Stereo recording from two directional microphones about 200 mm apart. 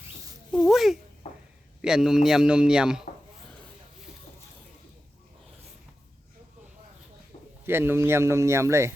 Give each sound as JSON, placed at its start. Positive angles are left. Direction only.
{"t": 0.5, "sound": "speech", "side_deg": 0}
{"t": 1.2, "sound": "a sound", "side_deg": 30}
{"t": 1.8, "sound": "speech", "side_deg": -5}
{"t": 7.6, "sound": "speech", "side_deg": -10}